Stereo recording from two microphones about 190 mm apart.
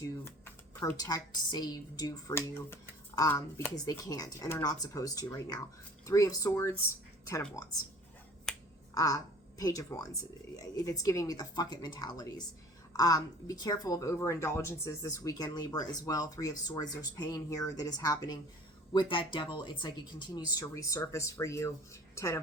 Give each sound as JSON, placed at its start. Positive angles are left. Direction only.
{"t": 0.3, "sound": "a woman's voice", "side_deg": 10}
{"t": 9.0, "sound": "a woman's voice", "side_deg": 20}